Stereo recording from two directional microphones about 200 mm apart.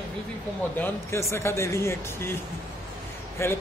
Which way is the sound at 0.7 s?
15° left (ahead or behind).